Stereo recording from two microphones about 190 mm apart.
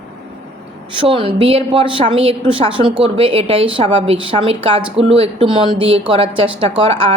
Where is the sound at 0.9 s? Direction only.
25° right (ahead or behind).